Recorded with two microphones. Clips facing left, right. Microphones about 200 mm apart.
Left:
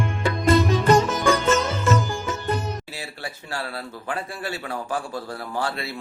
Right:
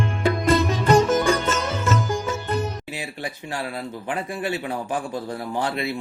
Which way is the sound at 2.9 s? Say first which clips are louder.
Right 4 dB; 15° right (ahead or behind).